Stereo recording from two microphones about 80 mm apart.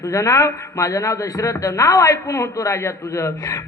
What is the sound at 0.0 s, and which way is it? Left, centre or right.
A man's voice, left.